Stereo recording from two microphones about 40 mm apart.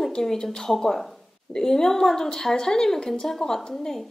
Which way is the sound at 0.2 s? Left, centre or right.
Centre.